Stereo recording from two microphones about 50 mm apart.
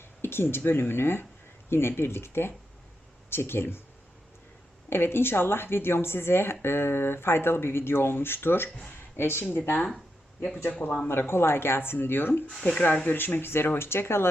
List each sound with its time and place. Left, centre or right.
0.2 s a sound: left
0.5 s speech: left
4.9 s speech: left
10.7 s speech: left
11.1 s speech: left